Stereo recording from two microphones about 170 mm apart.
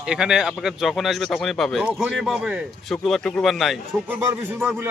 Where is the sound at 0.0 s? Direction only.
5° right (ahead or behind).